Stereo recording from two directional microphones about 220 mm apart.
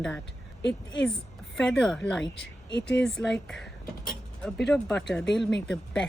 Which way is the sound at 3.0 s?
5° left (ahead or behind).